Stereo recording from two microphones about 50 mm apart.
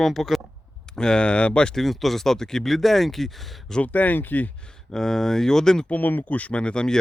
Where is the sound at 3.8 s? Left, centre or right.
Left.